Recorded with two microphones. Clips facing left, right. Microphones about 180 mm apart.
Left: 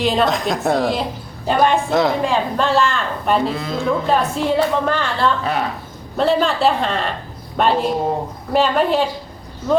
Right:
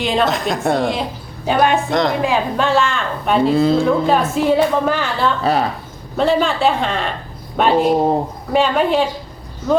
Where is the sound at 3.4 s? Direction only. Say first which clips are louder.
Right 10 dB; 30° right (ahead or behind).